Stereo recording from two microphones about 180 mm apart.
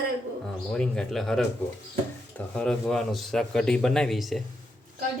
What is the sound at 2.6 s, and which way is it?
Speech, 5° left (ahead or behind).